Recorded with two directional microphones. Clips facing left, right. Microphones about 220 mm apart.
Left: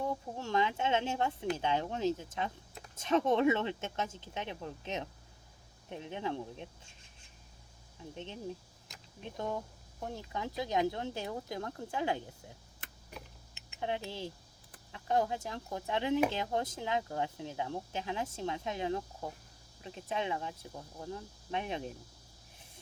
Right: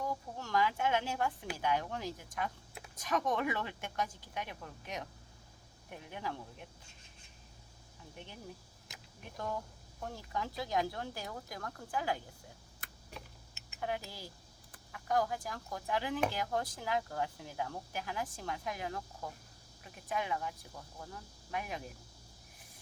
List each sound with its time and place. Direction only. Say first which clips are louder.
0.0 s a sound: left 3 dB; 25° left (ahead or behind)
1.5 s speech: left 2 dB; 25° left (ahead or behind)
8.1 s speech: left 7 dB; 25° left (ahead or behind)
13.6 s speech: left 2 dB; 25° left (ahead or behind)